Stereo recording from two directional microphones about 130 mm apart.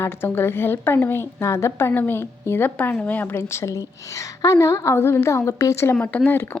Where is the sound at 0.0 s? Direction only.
15° left (ahead or behind).